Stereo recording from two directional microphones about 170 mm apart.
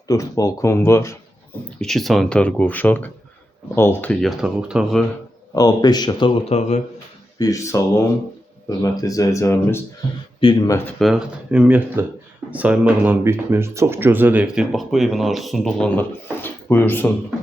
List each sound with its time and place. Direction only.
0.1 s speech: 20° left (ahead or behind)
1.8 s speech: centre (ahead or behind)
5.5 s speech: 25° left (ahead or behind); by 6.8 s 40° left (ahead or behind)
7.3 s speech: 20° left (ahead or behind)
10.4 s speech: 30° left (ahead or behind)
11.0 s speech: 5° right (ahead or behind); by 17.1 s 10° left (ahead or behind)